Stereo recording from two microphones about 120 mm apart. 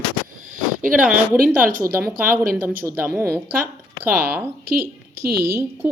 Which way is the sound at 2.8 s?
20° right (ahead or behind).